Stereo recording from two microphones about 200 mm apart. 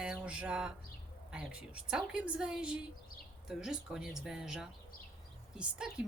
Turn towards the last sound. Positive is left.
turn(degrees=-5)  # may be behind; listen again after turning